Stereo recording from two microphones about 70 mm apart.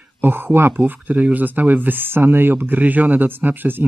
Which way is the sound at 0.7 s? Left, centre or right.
Right.